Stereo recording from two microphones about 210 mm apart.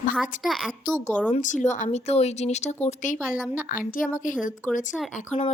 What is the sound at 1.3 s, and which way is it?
A woman's voice, 35° left (ahead or behind).